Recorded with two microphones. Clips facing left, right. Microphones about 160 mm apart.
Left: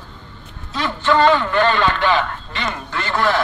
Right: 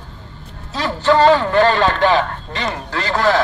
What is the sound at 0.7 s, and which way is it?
A man's voice, 40° right (ahead or behind).